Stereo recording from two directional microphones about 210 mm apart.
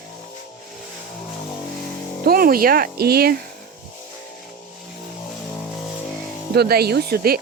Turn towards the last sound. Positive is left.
turn(degrees=-45)  # may be behind; listen again after turning